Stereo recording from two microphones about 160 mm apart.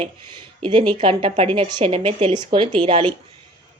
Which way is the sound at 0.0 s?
30° right (ahead or behind).